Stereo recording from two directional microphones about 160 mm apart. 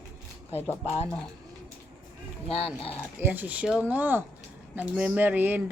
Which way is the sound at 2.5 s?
35° left (ahead or behind).